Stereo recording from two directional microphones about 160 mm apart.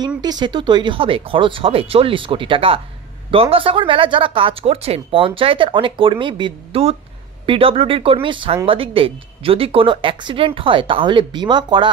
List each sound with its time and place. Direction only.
0.2 s speech: 25° right (ahead or behind)